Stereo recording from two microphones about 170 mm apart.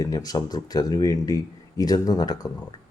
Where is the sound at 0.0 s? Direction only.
20° left (ahead or behind).